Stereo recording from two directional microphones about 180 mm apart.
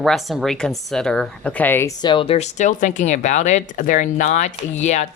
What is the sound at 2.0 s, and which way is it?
Speech, 25° left (ahead or behind).